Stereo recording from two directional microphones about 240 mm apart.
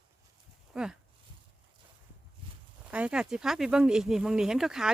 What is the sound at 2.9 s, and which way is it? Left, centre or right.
Speech, centre.